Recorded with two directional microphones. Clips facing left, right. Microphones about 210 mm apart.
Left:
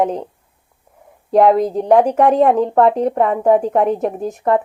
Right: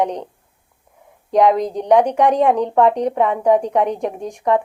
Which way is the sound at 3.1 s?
40° left (ahead or behind).